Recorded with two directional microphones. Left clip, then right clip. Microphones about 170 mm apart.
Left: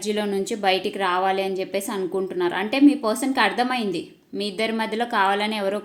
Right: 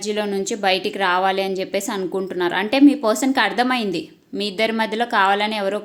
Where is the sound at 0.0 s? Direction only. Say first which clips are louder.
Right 2 dB; 15° right (ahead or behind).